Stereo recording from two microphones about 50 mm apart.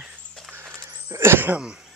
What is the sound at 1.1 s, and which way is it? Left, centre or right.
Speech, right.